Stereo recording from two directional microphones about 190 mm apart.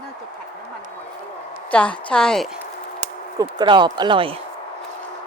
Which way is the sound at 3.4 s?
25° right (ahead or behind).